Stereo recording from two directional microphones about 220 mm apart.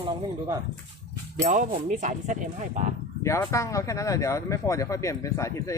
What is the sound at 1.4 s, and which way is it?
Speech, 35° right (ahead or behind).